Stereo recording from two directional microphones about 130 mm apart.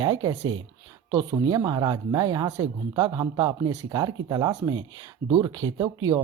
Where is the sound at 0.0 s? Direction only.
30° right (ahead or behind).